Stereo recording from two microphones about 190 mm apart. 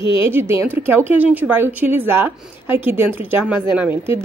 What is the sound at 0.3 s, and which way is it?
A woman's voice, 10° right (ahead or behind).